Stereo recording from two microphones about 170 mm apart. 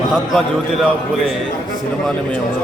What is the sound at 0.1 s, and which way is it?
Speech, centre (ahead or behind).